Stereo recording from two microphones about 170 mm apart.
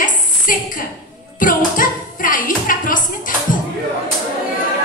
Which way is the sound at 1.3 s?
55° left (ahead or behind).